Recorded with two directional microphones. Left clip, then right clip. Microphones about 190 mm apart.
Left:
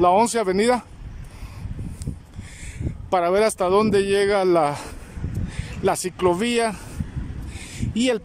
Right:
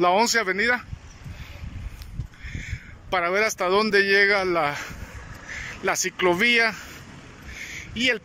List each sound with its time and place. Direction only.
0.0 s speech: 20° left (ahead or behind)
2.6 s speech: 25° left (ahead or behind)
7.5 s a sound: 25° left (ahead or behind)